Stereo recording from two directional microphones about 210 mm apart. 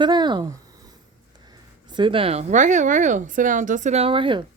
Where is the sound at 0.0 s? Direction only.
20° right (ahead or behind).